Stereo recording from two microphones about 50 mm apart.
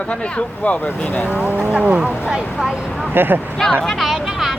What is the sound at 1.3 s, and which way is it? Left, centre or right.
Speech, right.